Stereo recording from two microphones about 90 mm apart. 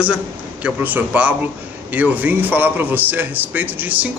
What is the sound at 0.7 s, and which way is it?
A man's voice, 15° right (ahead or behind).